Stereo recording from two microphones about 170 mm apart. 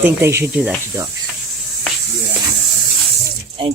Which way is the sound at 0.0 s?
15° right (ahead or behind).